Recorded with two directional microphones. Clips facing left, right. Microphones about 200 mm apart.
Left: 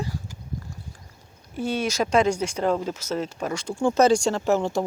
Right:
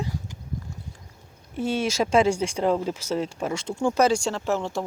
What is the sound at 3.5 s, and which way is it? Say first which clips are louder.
Speech: left 2 dB; 25° right (ahead or behind).